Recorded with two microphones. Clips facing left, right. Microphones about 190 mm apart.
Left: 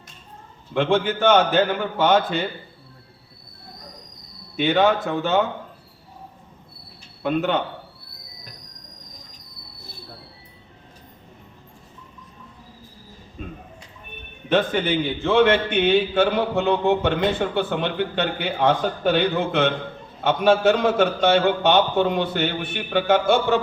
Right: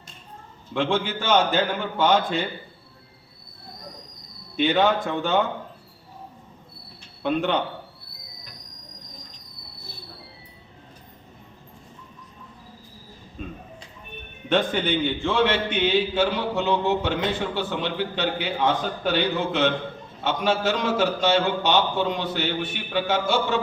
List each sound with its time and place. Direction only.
0.9 s a man's voice: 55° left (ahead or behind)
2.0 s a man's voice: centre (ahead or behind)
4.5 s a man's voice: centre (ahead or behind)
7.2 s a man's voice: centre (ahead or behind)
13.4 s a man's voice: centre (ahead or behind)
15.3 s a man's voice: 55° left (ahead or behind)